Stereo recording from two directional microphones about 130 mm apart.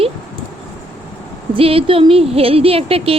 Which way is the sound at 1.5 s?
45° right (ahead or behind).